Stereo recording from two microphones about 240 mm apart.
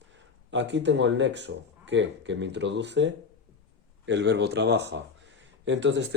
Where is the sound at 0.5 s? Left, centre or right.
Right.